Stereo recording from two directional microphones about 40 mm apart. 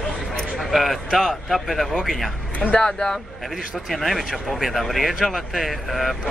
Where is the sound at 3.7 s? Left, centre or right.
Centre.